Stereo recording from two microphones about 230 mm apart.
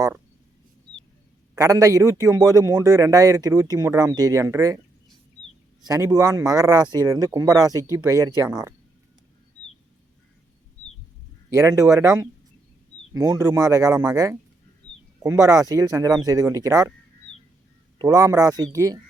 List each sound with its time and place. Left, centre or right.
1.5 s speech: centre
5.8 s speech: centre
11.5 s speech: centre
18.0 s speech: centre